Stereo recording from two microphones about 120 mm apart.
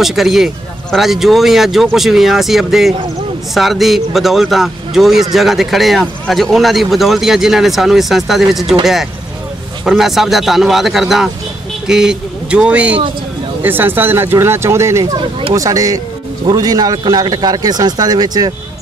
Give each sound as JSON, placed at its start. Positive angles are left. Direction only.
{"t": 0.0, "sound": "speech", "side_deg": 0}
{"t": 9.8, "sound": "a man's voice", "side_deg": 0}